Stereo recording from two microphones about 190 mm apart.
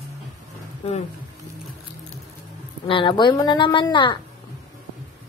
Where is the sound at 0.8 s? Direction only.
35° left (ahead or behind).